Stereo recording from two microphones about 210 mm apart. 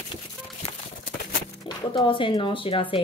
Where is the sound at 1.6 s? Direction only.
20° left (ahead or behind).